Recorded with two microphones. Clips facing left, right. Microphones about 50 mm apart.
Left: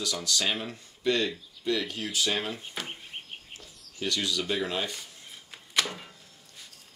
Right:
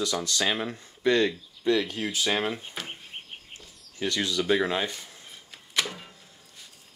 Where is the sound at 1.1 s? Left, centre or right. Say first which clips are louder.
Right 4 dB; right.